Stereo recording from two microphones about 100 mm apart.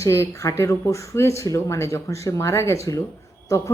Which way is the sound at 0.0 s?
30° left (ahead or behind).